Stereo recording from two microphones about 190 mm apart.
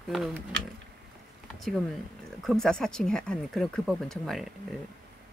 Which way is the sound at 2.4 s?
Centre (ahead or behind).